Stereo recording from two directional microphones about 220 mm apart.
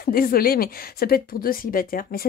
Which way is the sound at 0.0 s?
40° left (ahead or behind).